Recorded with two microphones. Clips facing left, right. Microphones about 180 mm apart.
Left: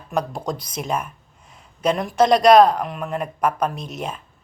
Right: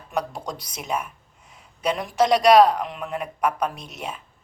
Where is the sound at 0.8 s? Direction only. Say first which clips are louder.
Right 1 dB; 45° left (ahead or behind).